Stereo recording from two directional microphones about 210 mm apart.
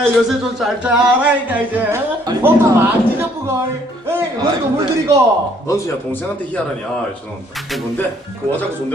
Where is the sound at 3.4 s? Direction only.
10° right (ahead or behind).